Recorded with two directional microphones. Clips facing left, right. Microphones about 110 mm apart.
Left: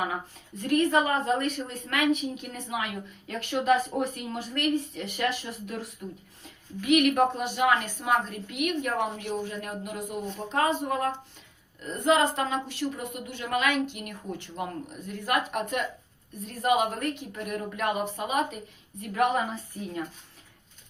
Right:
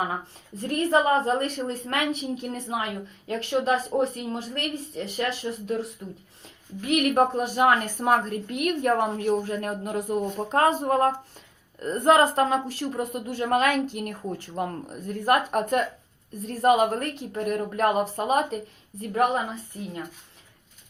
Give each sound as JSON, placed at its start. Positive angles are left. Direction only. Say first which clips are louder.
{"t": 0.7, "sound": "a woman's voice", "louder": "right 2 dB", "side_deg": -35}
{"t": 6.8, "sound": "a woman's voice", "louder": "even", "side_deg": -40}